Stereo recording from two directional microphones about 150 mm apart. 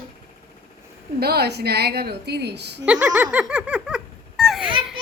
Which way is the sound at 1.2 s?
90° right.